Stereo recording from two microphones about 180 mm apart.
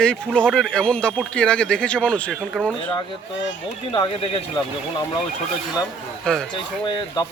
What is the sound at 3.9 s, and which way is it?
Speech, 30° left (ahead or behind).